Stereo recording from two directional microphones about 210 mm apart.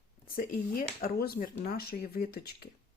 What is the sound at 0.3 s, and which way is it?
Speech, 45° left (ahead or behind).